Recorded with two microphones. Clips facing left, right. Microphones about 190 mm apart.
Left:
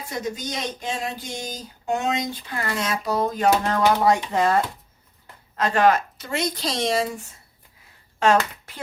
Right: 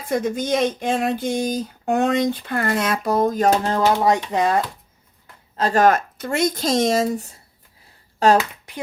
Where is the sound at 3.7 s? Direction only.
25° right (ahead or behind).